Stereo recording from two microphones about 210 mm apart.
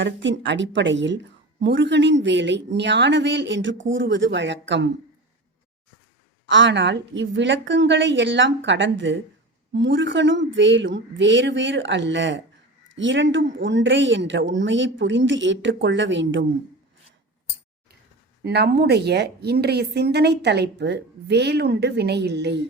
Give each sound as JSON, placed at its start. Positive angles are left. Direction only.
{"t": 0.0, "sound": "speech", "side_deg": -60}
{"t": 6.4, "sound": "speech", "side_deg": -60}
{"t": 18.4, "sound": "a woman's voice", "side_deg": -50}